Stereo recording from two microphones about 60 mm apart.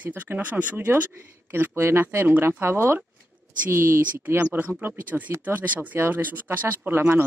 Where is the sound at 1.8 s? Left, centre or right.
Right.